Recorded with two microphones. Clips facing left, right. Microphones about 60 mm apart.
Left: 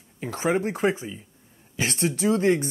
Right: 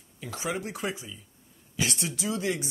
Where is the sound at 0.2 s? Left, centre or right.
Left.